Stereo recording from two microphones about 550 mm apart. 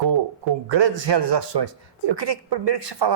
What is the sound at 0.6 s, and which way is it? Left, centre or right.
Speech, right.